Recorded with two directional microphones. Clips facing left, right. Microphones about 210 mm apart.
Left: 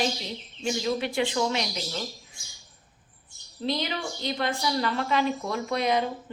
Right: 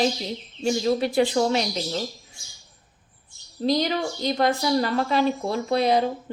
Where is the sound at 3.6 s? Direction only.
40° right (ahead or behind).